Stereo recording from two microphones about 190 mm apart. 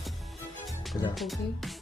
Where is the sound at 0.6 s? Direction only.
Centre (ahead or behind).